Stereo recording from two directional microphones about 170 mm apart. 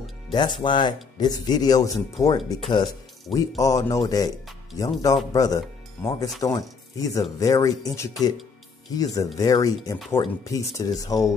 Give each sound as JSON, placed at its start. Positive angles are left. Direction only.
{"t": 0.3, "sound": "speech", "side_deg": 25}